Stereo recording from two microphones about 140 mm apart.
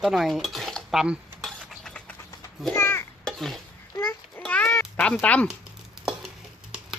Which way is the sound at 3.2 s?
5° left (ahead or behind).